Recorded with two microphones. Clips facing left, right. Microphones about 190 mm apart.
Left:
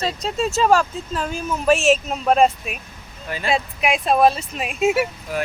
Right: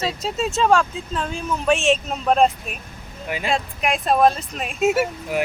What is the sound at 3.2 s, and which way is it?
Speech, 15° right (ahead or behind).